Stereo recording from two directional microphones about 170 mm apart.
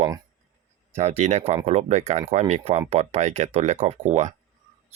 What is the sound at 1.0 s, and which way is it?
Speech, 40° right (ahead or behind).